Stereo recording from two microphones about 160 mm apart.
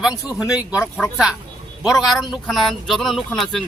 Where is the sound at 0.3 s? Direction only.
5° right (ahead or behind).